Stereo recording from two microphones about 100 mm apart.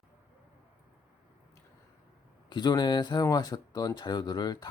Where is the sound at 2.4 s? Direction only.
45° left (ahead or behind).